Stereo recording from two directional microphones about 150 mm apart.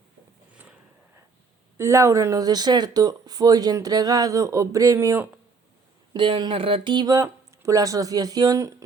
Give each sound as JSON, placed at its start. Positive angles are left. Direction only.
{"t": 0.5, "sound": "a sound", "side_deg": -10}
{"t": 1.8, "sound": "speech", "side_deg": -20}
{"t": 6.1, "sound": "speech", "side_deg": -30}